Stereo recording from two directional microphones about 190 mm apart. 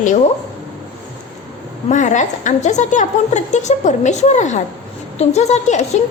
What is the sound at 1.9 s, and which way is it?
A woman's voice, 40° left (ahead or behind).